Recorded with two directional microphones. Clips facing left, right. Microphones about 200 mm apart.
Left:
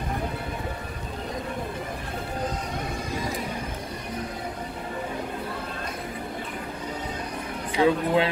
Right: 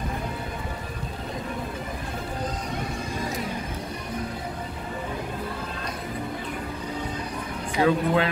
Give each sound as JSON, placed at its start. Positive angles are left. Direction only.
{"t": 7.8, "sound": "a man's voice", "side_deg": 20}